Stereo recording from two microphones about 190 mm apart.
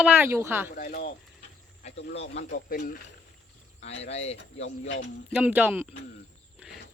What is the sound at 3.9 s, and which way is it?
Speech, 35° left (ahead or behind).